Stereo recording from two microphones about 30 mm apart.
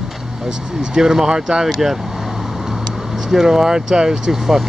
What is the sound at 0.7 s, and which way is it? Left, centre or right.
Speech, centre.